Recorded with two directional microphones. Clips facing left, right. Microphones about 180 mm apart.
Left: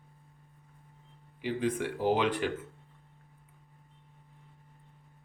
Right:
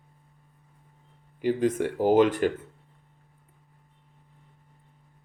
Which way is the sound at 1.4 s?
45° right (ahead or behind).